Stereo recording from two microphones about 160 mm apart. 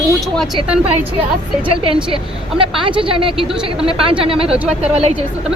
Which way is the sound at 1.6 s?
35° right (ahead or behind).